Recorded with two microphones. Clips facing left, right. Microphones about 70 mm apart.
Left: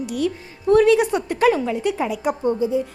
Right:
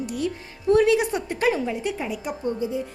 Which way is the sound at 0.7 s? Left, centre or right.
Left.